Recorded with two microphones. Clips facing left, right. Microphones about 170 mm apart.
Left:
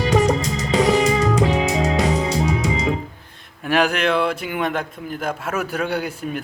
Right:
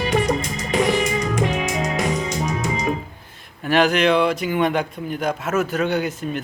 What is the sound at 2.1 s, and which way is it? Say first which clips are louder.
Music: left 3 dB; 35° left (ahead or behind).